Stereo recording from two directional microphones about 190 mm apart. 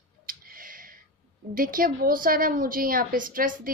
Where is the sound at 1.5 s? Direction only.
45° right (ahead or behind).